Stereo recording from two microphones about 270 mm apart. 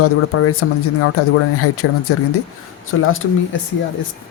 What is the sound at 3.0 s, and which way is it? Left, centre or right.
Speech, left.